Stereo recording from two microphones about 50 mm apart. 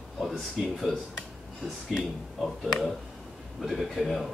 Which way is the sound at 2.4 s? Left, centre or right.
Centre.